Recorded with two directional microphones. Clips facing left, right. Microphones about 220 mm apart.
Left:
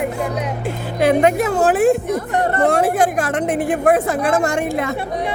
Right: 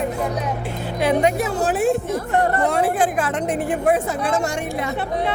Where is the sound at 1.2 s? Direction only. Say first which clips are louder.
Left 4 dB; 55° left (ahead or behind).